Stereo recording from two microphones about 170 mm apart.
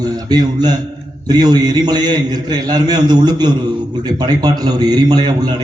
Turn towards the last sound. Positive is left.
turn(degrees=-25)  # may be behind; listen again after turning